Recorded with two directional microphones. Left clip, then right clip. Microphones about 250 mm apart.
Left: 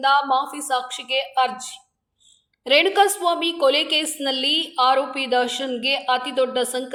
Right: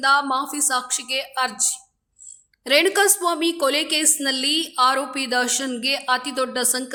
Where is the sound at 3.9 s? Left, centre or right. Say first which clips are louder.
Even; right.